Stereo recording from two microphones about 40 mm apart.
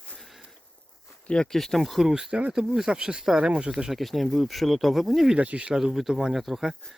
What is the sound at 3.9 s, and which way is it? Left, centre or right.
Speech, centre.